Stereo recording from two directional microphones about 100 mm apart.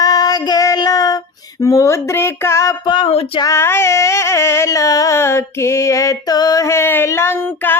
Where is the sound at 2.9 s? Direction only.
65° left (ahead or behind).